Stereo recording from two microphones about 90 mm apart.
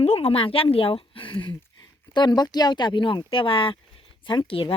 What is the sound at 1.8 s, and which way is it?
Speech, 50° left (ahead or behind).